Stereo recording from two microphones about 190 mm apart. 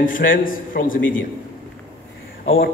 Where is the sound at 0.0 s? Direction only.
45° left (ahead or behind).